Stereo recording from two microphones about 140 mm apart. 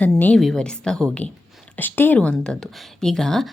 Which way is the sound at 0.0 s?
10° left (ahead or behind).